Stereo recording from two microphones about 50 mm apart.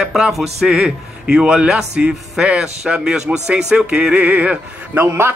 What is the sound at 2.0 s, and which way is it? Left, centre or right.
Male singing, right.